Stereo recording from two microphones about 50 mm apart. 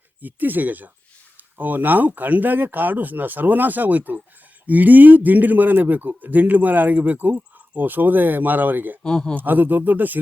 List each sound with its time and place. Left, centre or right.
0.2 s a man's voice: right
9.0 s a man's voice: centre
9.3 s a man's voice: right